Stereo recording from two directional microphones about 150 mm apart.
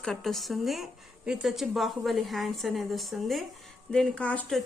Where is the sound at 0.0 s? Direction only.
Centre (ahead or behind).